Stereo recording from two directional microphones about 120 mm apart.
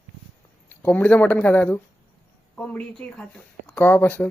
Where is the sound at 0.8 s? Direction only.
15° left (ahead or behind).